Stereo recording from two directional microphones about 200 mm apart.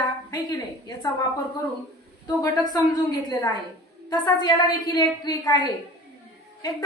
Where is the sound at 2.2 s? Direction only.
15° left (ahead or behind).